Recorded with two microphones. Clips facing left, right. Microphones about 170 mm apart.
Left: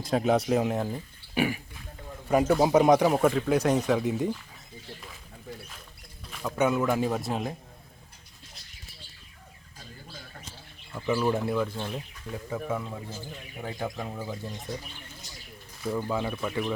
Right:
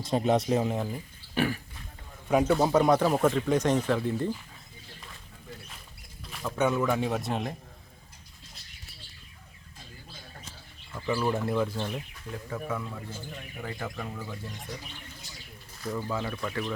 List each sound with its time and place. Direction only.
0.0 s a man's voice: centre (ahead or behind)
0.6 s a man's voice: 10° left (ahead or behind)
2.7 s speech: 20° left (ahead or behind)
3.1 s speech: 5° left (ahead or behind)
6.4 s a man's voice: 5° left (ahead or behind)
10.9 s a man's voice: 10° left (ahead or behind)
12.5 s speech: 25° left (ahead or behind)
15.8 s speech: 10° left (ahead or behind)